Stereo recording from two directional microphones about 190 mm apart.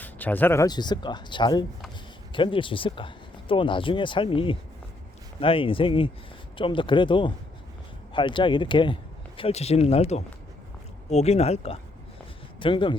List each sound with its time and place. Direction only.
0.0 s speech: 10° left (ahead or behind); by 13.0 s 25° left (ahead or behind)